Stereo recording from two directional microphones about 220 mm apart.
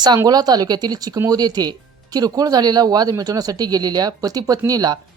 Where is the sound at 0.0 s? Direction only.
20° right (ahead or behind).